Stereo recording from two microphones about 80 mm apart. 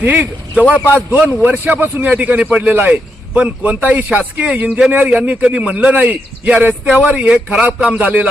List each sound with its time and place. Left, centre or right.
0.0 s speech: right